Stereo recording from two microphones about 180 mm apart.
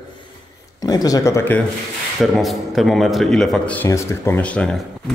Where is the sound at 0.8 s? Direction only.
20° left (ahead or behind).